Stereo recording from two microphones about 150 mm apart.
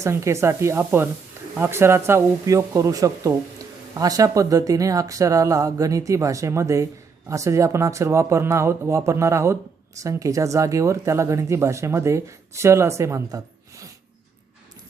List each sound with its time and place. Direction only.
0.0 s speech: 20° right (ahead or behind)